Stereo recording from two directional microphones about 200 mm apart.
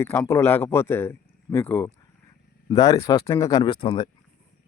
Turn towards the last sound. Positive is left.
turn(degrees=20)  # may be behind; listen again after turning